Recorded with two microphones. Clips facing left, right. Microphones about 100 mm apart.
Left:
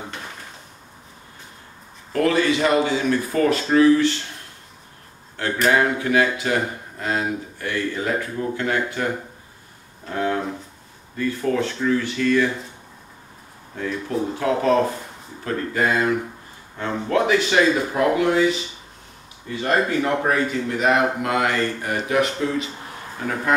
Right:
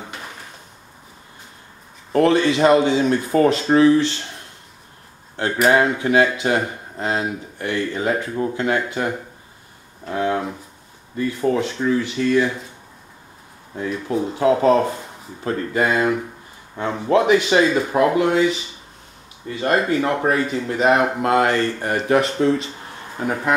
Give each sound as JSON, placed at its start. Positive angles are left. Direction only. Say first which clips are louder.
{"t": 2.1, "sound": "speech", "louder": "right 3 dB", "side_deg": -25}
{"t": 5.7, "sound": "speech", "louder": "right 2 dB", "side_deg": -20}
{"t": 10.0, "sound": "a sound", "louder": "right 2 dB", "side_deg": -20}
{"t": 11.1, "sound": "speech", "louder": "right 2 dB", "side_deg": -25}
{"t": 13.7, "sound": "speech", "louder": "right 2 dB", "side_deg": -25}
{"t": 19.6, "sound": "speech", "louder": "right 2 dB", "side_deg": -30}